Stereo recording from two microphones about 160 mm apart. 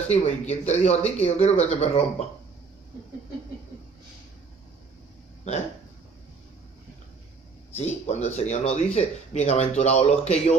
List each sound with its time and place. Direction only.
0.1 s speech: 45° left (ahead or behind)
7.8 s speech: 45° left (ahead or behind)